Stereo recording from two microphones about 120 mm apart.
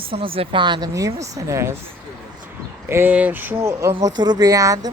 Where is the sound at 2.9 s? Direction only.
15° right (ahead or behind).